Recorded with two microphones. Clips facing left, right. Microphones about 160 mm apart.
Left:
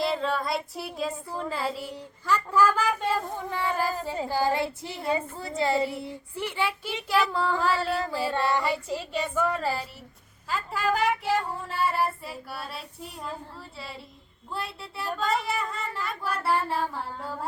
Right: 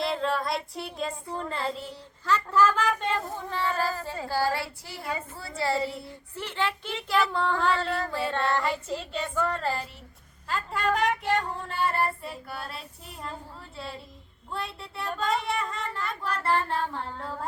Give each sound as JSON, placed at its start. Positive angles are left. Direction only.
{"t": 0.0, "sound": "child singing", "side_deg": 0}
{"t": 3.3, "sound": "speech", "side_deg": 15}
{"t": 10.5, "sound": "child singing", "side_deg": 5}